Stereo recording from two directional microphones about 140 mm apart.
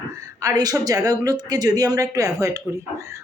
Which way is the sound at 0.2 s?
25° right (ahead or behind).